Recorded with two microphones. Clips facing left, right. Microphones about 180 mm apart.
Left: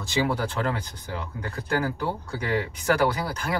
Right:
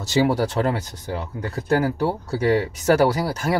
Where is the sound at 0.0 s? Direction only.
40° right (ahead or behind).